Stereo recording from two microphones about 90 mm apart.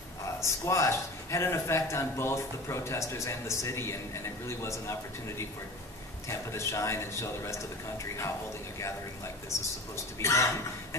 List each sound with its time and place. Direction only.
0.2 s a man's voice: 35° left (ahead or behind)
6.2 s a man's voice: 35° left (ahead or behind)
9.5 s a man's voice: 35° left (ahead or behind)